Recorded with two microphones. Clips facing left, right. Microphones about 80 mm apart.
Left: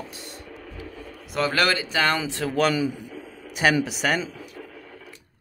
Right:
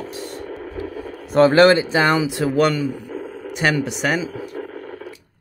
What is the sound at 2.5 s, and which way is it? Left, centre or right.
Speech, centre.